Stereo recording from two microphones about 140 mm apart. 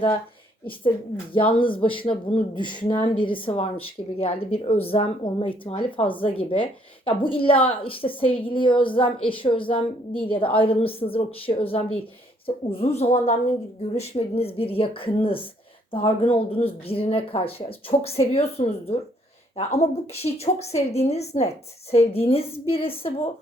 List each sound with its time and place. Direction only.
1.3 s a woman's voice: 40° left (ahead or behind)
20.2 s a woman's voice: 50° left (ahead or behind)